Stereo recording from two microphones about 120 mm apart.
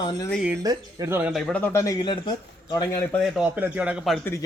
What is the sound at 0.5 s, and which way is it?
Speech, 30° right (ahead or behind).